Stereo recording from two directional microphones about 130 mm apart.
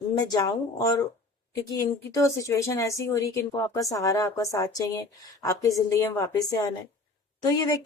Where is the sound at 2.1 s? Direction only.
25° left (ahead or behind).